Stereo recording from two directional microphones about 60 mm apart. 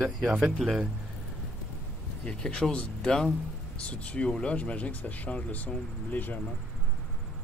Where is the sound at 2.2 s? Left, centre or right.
Centre; by 6.4 s left.